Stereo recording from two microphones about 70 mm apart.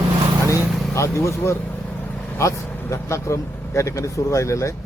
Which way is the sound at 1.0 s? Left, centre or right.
Left.